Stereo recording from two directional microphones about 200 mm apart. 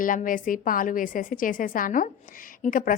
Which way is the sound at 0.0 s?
40° left (ahead or behind).